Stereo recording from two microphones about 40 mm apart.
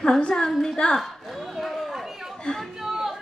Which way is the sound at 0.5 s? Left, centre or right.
Centre.